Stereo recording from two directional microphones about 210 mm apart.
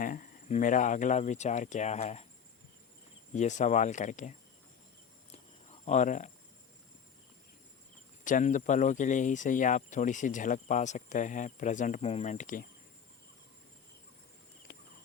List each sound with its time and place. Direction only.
0.0 s speech: 40° left (ahead or behind)
3.3 s speech: 35° left (ahead or behind)
5.3 s cricket: 30° left (ahead or behind)
8.2 s speech: 40° left (ahead or behind)